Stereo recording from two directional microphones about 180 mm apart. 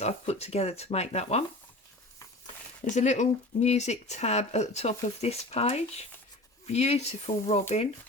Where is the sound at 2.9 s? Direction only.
40° left (ahead or behind).